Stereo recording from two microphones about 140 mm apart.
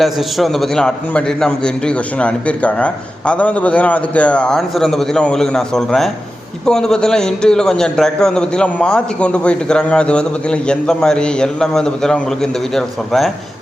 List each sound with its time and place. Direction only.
0.0 s a man's voice: centre (ahead or behind)